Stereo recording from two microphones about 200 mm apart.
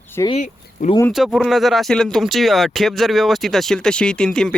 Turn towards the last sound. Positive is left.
turn(degrees=5)  # may be behind; listen again after turning